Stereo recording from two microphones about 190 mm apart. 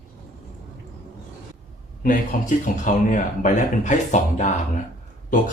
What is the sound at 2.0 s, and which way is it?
Speech, 45° left (ahead or behind).